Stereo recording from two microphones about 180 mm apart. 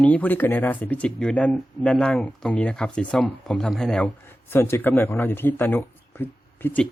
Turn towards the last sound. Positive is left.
turn(degrees=10)  # may be behind; listen again after turning